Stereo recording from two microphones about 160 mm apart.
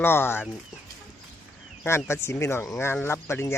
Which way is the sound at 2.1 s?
15° left (ahead or behind).